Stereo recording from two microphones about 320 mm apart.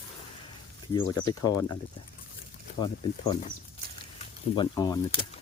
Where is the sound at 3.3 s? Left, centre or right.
Left.